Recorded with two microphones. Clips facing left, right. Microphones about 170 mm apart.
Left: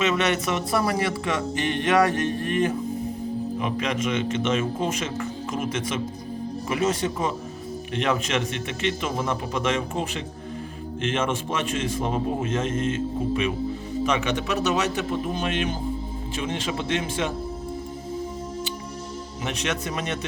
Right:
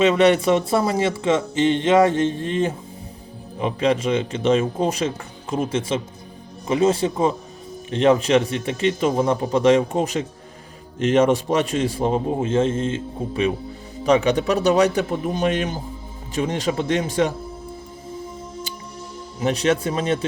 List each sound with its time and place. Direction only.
0.0 s a man's voice: 30° right (ahead or behind)
19.4 s a man's voice: 35° right (ahead or behind)